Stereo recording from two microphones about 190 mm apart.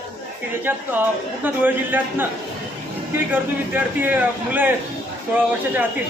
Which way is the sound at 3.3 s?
10° right (ahead or behind).